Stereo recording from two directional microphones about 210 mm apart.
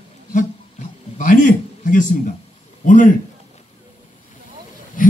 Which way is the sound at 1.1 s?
40° left (ahead or behind).